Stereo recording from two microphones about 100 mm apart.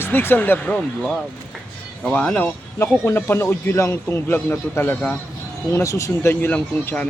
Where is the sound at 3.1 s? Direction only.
25° left (ahead or behind).